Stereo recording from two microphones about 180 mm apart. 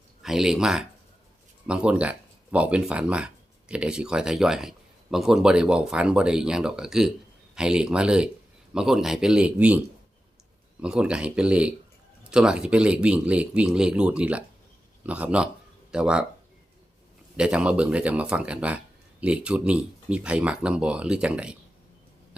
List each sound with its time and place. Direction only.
0.2 s speech: centre (ahead or behind)
17.3 s speech: 5° right (ahead or behind)